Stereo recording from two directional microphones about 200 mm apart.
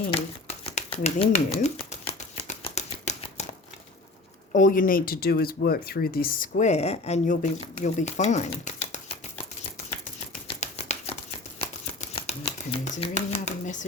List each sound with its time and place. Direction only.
0.1 s speech: 30° left (ahead or behind)
2.3 s scissors: 30° left (ahead or behind)
4.5 s speech: 40° left (ahead or behind)
10.6 s a sound: 30° left (ahead or behind)
11.9 s speech: 35° left (ahead or behind)